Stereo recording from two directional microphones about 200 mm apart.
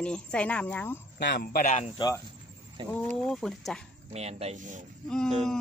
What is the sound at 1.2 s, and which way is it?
Speech, 60° left (ahead or behind).